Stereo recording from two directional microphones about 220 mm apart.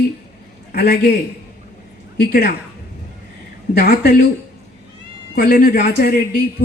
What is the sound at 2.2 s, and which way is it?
Speech, 45° left (ahead or behind).